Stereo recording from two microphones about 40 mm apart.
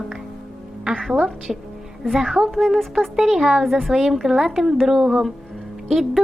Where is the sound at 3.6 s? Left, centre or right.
Centre.